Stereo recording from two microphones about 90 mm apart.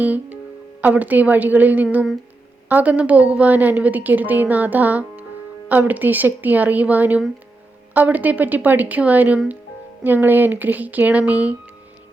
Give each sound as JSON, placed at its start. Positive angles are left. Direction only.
{"t": 0.0, "sound": "a woman's voice", "side_deg": -20}